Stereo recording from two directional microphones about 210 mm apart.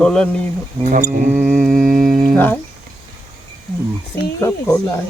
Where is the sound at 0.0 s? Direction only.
5° left (ahead or behind).